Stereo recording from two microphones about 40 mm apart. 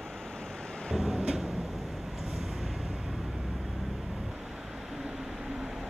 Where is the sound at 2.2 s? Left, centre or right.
Centre.